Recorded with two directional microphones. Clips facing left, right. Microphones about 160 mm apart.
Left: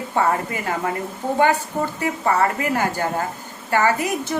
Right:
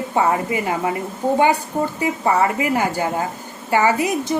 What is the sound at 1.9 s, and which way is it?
A woman's voice, 15° right (ahead or behind).